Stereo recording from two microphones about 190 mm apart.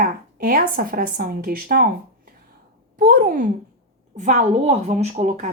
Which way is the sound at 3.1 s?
45° right (ahead or behind).